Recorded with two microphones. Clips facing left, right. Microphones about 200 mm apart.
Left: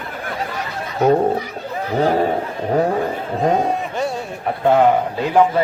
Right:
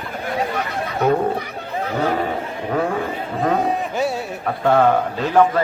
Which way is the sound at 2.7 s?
35° left (ahead or behind).